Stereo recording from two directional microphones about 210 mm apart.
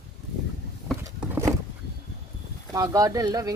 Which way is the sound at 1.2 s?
15° right (ahead or behind).